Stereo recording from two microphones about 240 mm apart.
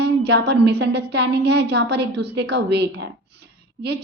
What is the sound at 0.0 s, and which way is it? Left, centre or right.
A woman's voice, right.